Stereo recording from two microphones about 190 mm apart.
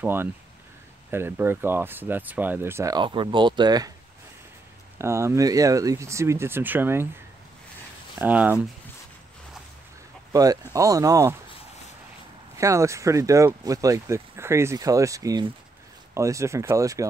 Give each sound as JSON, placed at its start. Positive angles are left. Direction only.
{"t": 0.0, "sound": "speech", "side_deg": -10}
{"t": 4.9, "sound": "speech", "side_deg": -15}
{"t": 8.2, "sound": "speech", "side_deg": -10}
{"t": 10.3, "sound": "speech", "side_deg": -20}
{"t": 12.5, "sound": "speech", "side_deg": -15}